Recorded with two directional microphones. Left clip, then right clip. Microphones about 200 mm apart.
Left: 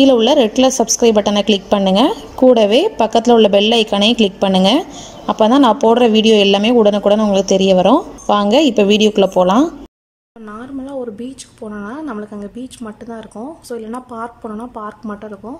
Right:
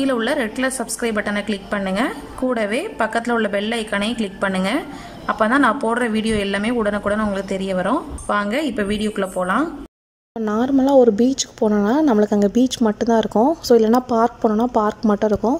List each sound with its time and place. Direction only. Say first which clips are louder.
0.0 s a woman's voice: left 10 dB; 10° left (ahead or behind)
10.4 s speech: right 11 dB; 25° right (ahead or behind)